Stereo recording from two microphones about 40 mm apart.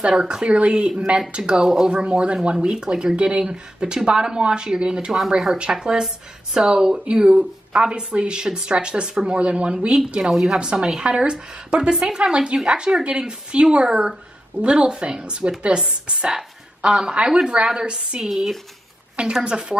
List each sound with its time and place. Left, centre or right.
0.1 s speech: right
10.3 s speech: centre
10.6 s speech: right
18.3 s speech: centre
19.4 s speech: right